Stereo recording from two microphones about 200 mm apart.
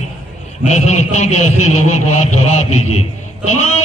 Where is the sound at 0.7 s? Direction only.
35° left (ahead or behind).